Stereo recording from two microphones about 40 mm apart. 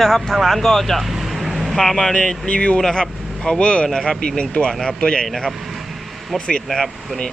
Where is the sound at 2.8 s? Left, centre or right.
Centre.